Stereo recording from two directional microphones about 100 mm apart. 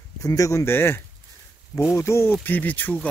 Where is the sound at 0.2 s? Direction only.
35° left (ahead or behind).